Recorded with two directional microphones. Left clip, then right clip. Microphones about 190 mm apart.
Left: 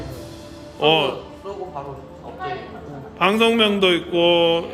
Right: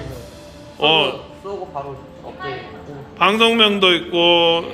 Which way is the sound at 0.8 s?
15° left (ahead or behind).